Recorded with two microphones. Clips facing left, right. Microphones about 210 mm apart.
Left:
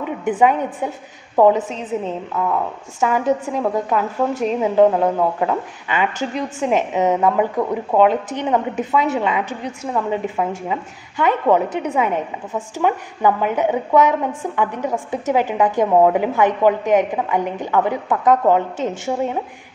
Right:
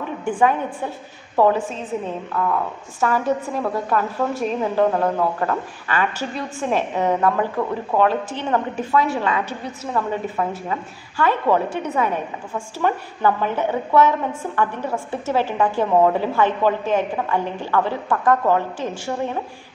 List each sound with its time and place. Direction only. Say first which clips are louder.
0.0 s a woman's voice: left 3 dB; 20° left (ahead or behind)
3.0 s a woman's voice: left 2 dB; 15° left (ahead or behind)